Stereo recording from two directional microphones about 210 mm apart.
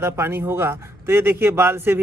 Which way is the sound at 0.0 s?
10° right (ahead or behind).